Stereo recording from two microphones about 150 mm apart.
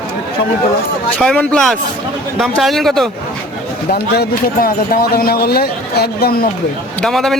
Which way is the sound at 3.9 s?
85° left.